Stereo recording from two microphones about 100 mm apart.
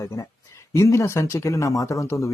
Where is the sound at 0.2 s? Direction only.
30° left (ahead or behind).